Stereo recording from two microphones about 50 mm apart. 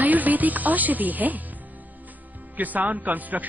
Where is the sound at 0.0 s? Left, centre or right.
Right.